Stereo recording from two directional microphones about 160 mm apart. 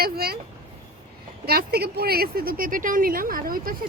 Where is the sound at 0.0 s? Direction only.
70° right (ahead or behind).